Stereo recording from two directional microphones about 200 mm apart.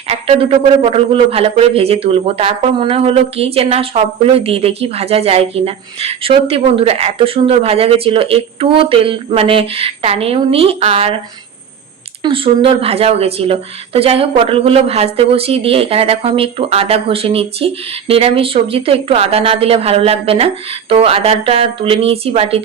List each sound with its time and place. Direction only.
0.1 s a man's voice: 30° right (ahead or behind)
12.2 s a man's voice: 25° right (ahead or behind)